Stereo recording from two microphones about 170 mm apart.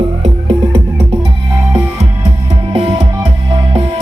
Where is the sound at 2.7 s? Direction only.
30° right (ahead or behind).